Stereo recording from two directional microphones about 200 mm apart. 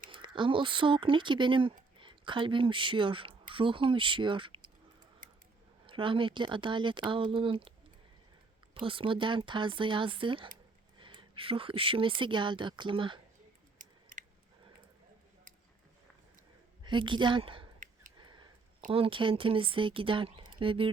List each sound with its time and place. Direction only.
0.1 s speech: 25° right (ahead or behind)
5.8 s speech: 25° right (ahead or behind)
8.7 s speech: 25° right (ahead or behind)
13.7 s scissors: 40° right (ahead or behind)
16.8 s a woman's voice: 25° right (ahead or behind)
18.2 s a sound: 20° right (ahead or behind)
18.9 s speech: 25° right (ahead or behind)